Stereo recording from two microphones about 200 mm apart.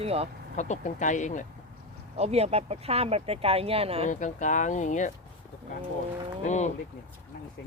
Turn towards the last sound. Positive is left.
turn(degrees=35)  # may be behind; listen again after turning